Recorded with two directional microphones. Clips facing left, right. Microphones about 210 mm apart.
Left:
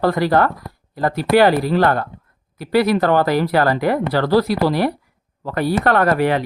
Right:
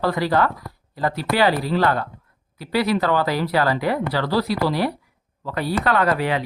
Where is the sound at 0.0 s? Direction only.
50° left (ahead or behind).